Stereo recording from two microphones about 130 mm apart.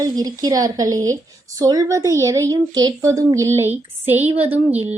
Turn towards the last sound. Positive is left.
turn(degrees=-15)  # may be behind; listen again after turning